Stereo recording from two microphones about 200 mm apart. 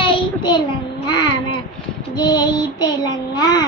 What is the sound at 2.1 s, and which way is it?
Child singing, 20° left (ahead or behind).